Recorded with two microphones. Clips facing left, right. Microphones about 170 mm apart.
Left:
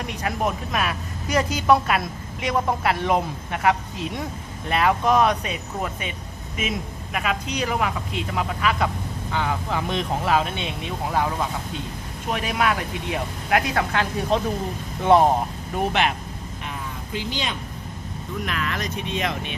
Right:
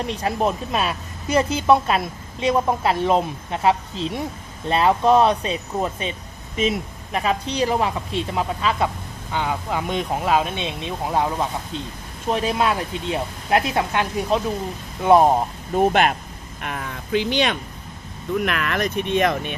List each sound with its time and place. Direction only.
0.0 s speech: 30° right (ahead or behind); by 15.3 s 15° right (ahead or behind)
15.8 s speech: 45° right (ahead or behind)
16.6 s speech: 65° right (ahead or behind); by 19.5 s 50° right (ahead or behind)